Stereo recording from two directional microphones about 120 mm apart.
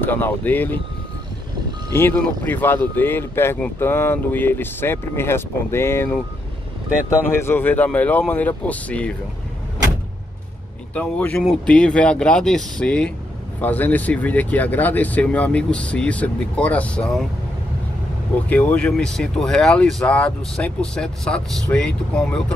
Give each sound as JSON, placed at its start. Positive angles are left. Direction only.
{"t": 0.0, "sound": "speech", "side_deg": 15}
{"t": 1.9, "sound": "speech", "side_deg": 20}
{"t": 7.2, "sound": "speech", "side_deg": 20}
{"t": 11.0, "sound": "speech", "side_deg": 15}
{"t": 18.5, "sound": "speech", "side_deg": 10}